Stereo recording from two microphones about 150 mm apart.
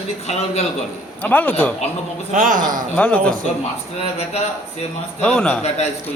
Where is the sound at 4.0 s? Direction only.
45° left (ahead or behind).